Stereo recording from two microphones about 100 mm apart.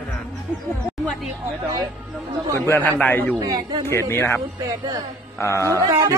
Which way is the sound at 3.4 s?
40° right (ahead or behind).